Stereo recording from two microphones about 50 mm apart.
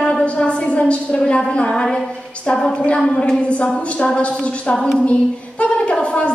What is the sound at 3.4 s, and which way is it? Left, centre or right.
A woman's voice, left.